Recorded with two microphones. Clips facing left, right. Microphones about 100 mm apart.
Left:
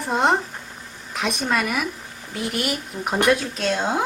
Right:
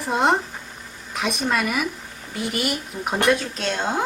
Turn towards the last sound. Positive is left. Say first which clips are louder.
# left 2 dB
turn(degrees=0)  # may be behind; listen again after turning